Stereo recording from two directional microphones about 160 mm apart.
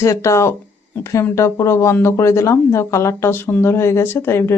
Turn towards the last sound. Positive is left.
turn(degrees=15)  # may be behind; listen again after turning